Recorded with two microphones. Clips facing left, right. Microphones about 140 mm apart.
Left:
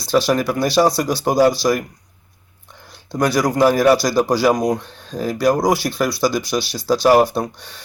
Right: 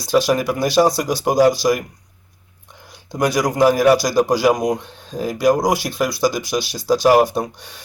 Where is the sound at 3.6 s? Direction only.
15° right (ahead or behind).